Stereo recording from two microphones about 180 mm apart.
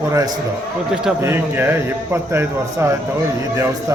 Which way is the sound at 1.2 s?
10° right (ahead or behind).